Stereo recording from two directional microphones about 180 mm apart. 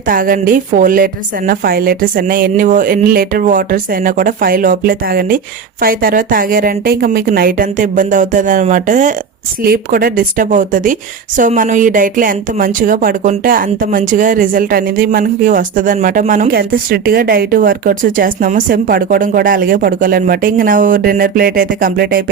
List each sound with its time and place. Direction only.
0.1 s a woman's voice: 50° right (ahead or behind)
9.6 s a woman's voice: 55° right (ahead or behind)